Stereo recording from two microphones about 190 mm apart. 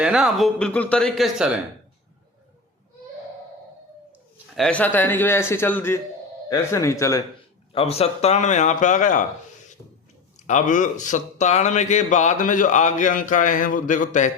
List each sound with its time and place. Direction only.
0.0 s speech: 5° right (ahead or behind)
4.5 s a man's voice: 5° left (ahead or behind)
7.7 s a man's voice: 30° left (ahead or behind)
10.4 s a man's voice: 40° left (ahead or behind)